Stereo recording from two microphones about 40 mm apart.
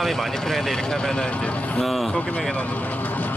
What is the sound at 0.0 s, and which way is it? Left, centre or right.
Speech, centre.